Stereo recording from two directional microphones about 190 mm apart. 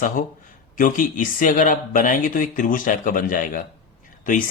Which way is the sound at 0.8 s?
45° left (ahead or behind).